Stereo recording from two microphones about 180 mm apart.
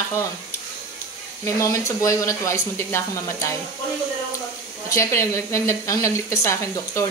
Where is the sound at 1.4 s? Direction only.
15° left (ahead or behind).